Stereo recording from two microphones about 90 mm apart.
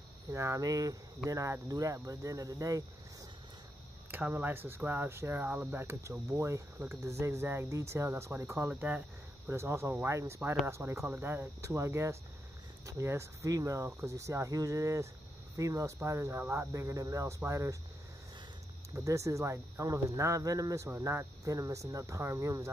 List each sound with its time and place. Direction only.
0.3 s speech: 30° right (ahead or behind)
4.1 s speech: 20° right (ahead or behind)
8.7 s speech: 15° right (ahead or behind)
9.5 s speech: 30° right (ahead or behind)
18.9 s speech: 35° right (ahead or behind)